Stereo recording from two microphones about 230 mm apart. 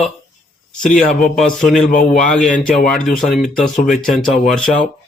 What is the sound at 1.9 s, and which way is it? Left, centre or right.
Speech, left.